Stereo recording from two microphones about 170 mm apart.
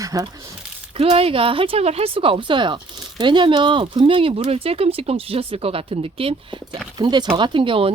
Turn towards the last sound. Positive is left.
turn(degrees=-30)  # may be behind; listen again after turning